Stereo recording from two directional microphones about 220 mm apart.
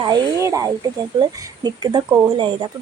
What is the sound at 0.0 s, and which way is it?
Speech, 15° right (ahead or behind).